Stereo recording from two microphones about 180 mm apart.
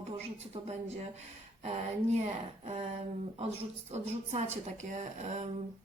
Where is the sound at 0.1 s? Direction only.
35° right (ahead or behind).